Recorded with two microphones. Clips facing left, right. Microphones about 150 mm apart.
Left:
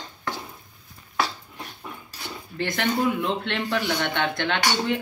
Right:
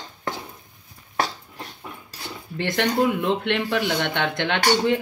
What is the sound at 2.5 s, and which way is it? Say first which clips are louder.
Speech: right 3 dB; 20° right (ahead or behind).